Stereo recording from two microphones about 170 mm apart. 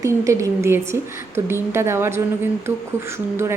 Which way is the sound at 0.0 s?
15° right (ahead or behind).